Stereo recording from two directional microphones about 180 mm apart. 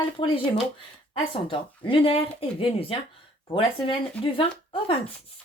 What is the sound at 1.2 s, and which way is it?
Speech, 30° left (ahead or behind).